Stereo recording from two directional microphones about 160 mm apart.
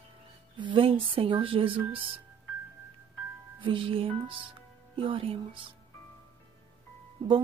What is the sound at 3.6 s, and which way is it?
Speech, 35° right (ahead or behind).